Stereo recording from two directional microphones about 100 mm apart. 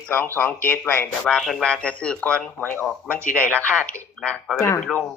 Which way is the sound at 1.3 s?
Centre (ahead or behind).